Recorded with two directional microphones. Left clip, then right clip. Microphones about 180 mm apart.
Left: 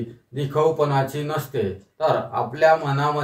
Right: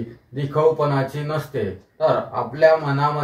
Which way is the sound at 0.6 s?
20° left (ahead or behind).